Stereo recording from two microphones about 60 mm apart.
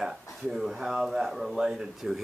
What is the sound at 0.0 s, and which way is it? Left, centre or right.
Speech, centre.